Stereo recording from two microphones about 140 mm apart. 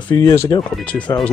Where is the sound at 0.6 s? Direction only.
5° left (ahead or behind).